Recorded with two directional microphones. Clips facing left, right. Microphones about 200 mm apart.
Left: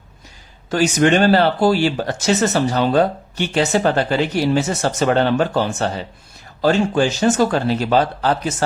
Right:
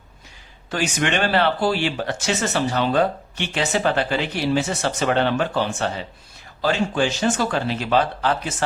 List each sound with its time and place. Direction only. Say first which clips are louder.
0.7 s speech: left 8 dB; 40° left (ahead or behind)